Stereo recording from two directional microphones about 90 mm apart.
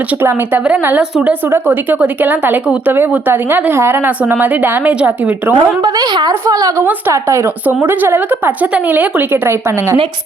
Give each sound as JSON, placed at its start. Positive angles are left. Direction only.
{"t": 0.2, "sound": "a woman's voice", "side_deg": -25}
{"t": 6.5, "sound": "speech", "side_deg": -40}